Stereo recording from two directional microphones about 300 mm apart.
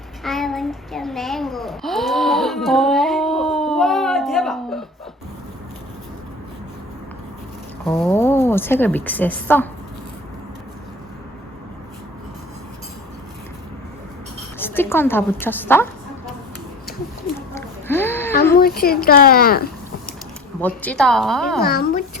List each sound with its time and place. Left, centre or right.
0.3 s a sound: centre
7.9 s a woman's voice: centre
14.6 s a woman's voice: centre
17.5 s a sound: centre
18.5 s speech: left
20.6 s a woman's voice: centre
21.6 s speech: left